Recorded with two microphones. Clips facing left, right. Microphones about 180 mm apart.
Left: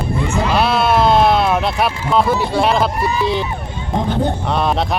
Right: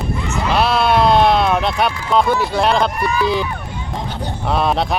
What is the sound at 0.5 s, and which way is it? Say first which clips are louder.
Speech: right 1 dB; centre (ahead or behind).